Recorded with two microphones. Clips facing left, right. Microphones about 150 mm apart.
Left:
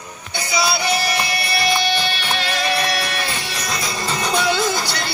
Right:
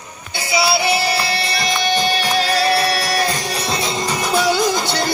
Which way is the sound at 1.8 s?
45° right (ahead or behind).